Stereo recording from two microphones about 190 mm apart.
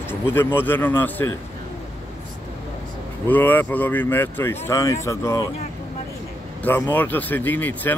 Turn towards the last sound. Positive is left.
turn(degrees=10)  # may be behind; listen again after turning